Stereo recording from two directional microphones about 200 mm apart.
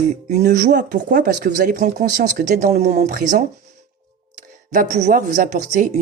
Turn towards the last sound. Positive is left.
turn(degrees=-40)  # may be behind; listen again after turning